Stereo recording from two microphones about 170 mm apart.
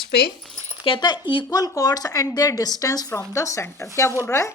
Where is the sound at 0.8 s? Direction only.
25° left (ahead or behind).